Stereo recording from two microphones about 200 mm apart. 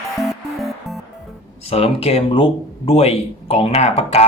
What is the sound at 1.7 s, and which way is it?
Speech, 30° left (ahead or behind).